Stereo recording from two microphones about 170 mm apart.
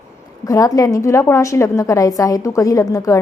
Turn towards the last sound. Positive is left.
turn(degrees=20)  # may be behind; listen again after turning